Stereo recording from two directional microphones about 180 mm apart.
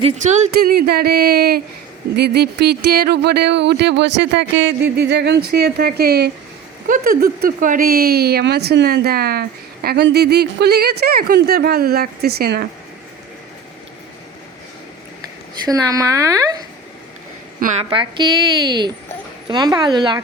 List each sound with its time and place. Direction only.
0.0 s speech: 40° right (ahead or behind)
0.6 s speech: 55° right (ahead or behind)
6.8 s speech: 50° right (ahead or behind)
15.6 s speech: 20° right (ahead or behind)
17.6 s a woman's voice: 40° right (ahead or behind)
17.8 s speech: 30° right (ahead or behind)
19.5 s speech: 25° right (ahead or behind)